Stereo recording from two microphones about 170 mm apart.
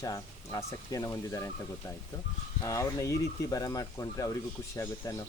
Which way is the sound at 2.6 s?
20° left (ahead or behind).